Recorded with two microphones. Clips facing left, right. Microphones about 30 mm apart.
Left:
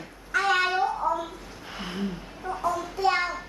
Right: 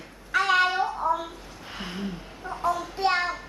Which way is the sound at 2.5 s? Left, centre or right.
Right.